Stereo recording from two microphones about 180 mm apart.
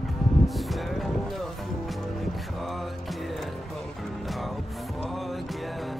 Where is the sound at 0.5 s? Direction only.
Centre (ahead or behind).